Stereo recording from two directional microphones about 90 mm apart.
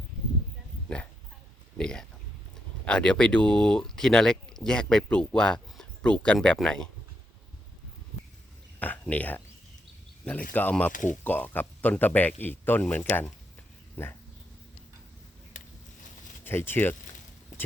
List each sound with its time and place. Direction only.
1.8 s speech: 10° left (ahead or behind)
8.8 s a sound: 20° left (ahead or behind)
10.2 s speech: 15° left (ahead or behind)
16.4 s speech: 25° left (ahead or behind)